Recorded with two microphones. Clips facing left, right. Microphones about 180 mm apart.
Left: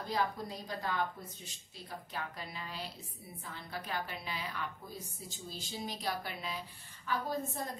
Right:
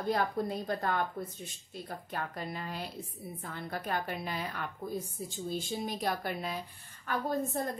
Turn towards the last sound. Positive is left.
turn(degrees=-55)  # may be behind; listen again after turning